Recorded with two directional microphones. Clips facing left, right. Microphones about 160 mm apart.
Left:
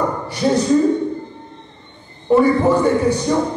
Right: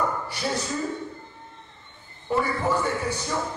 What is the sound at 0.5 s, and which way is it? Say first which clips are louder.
Speech: left 15 dB; 20° left (ahead or behind).